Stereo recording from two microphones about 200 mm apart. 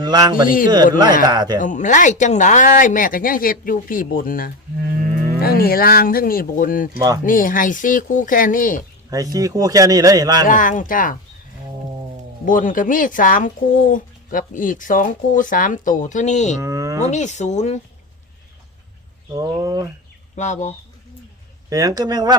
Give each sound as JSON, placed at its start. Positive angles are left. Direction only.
{"t": 0.0, "sound": "speech", "side_deg": -20}
{"t": 0.4, "sound": "speech", "side_deg": 45}
{"t": 1.3, "sound": "speech", "side_deg": -20}
{"t": 1.5, "sound": "speech", "side_deg": 40}
{"t": 4.8, "sound": "livestock", "side_deg": -45}
{"t": 5.4, "sound": "speech", "side_deg": 50}
{"t": 9.0, "sound": "a man's voice", "side_deg": -15}
{"t": 10.4, "sound": "speech", "side_deg": 40}
{"t": 12.5, "sound": "speech", "side_deg": 40}
{"t": 16.6, "sound": "a sound", "side_deg": -15}
{"t": 17.0, "sound": "speech", "side_deg": 35}
{"t": 19.4, "sound": "a man's voice", "side_deg": -20}
{"t": 20.3, "sound": "speech", "side_deg": 35}
{"t": 21.7, "sound": "speech", "side_deg": -15}